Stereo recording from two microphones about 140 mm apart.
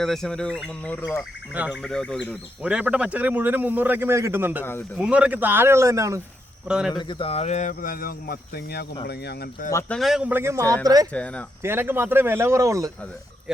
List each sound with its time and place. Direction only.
0.0 s speech: 5° left (ahead or behind)
1.5 s speech: 10° right (ahead or behind)
1.8 s speech: 5° left (ahead or behind)
2.1 s speech: 10° right (ahead or behind)
6.7 s speech: 5° right (ahead or behind)
6.9 s speech: 35° left (ahead or behind); by 9.7 s 90° left
9.9 s speech: centre (ahead or behind); by 11.1 s 25° right (ahead or behind)
11.1 s speech: 10° left (ahead or behind)
11.6 s speech: 15° right (ahead or behind)